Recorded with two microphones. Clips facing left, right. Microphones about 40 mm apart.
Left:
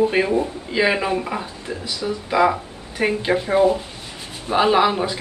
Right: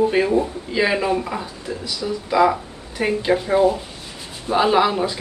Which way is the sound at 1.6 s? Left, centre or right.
Left.